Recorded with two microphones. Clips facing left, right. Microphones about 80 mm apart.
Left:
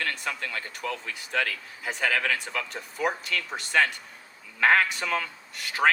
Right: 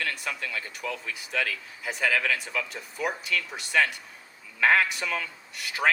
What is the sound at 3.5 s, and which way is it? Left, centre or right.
Speech, centre.